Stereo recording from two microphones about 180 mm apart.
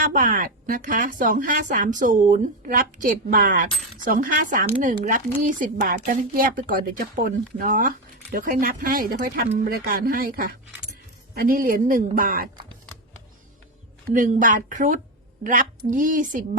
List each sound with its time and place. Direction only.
0.0 s speech: 45° right (ahead or behind)
14.1 s speech: 50° right (ahead or behind)